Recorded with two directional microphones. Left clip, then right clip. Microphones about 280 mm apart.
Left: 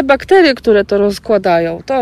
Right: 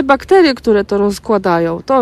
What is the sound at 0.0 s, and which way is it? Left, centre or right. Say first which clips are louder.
Speech: left 1 dB; centre.